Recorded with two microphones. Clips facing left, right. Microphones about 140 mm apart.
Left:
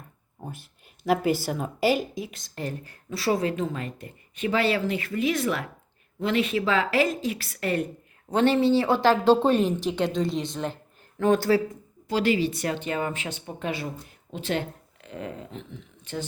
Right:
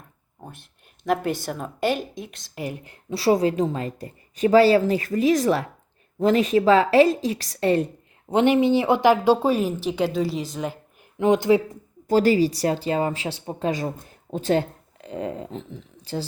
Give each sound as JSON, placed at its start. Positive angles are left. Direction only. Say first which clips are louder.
{"t": 0.4, "sound": "a woman's voice", "louder": "left 3 dB", "side_deg": 5}
{"t": 2.6, "sound": "a woman's voice", "louder": "right 2 dB", "side_deg": -15}
{"t": 8.3, "sound": "a woman's voice", "louder": "right 2 dB", "side_deg": -15}
{"t": 11.2, "sound": "speech", "louder": "right 3 dB", "side_deg": -20}
{"t": 12.0, "sound": "a woman's voice", "louder": "right 6 dB", "side_deg": -40}
{"t": 15.0, "sound": "speech", "louder": "right 6 dB", "side_deg": -30}